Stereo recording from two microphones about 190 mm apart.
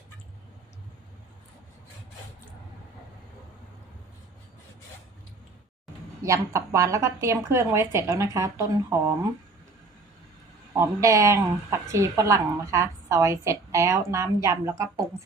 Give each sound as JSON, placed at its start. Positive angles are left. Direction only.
{"t": 6.2, "sound": "speech", "side_deg": -15}
{"t": 10.8, "sound": "speech", "side_deg": -15}